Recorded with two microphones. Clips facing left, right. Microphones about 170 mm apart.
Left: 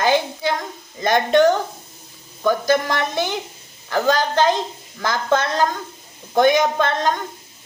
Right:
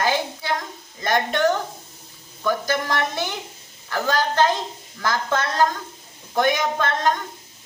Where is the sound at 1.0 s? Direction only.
20° left (ahead or behind).